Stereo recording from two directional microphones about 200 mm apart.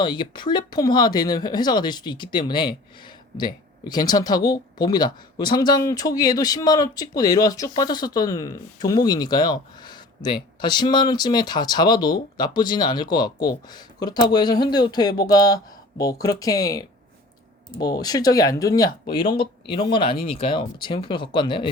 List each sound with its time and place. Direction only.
0.0 s speech: 25° left (ahead or behind)
18.0 s speech: 20° left (ahead or behind)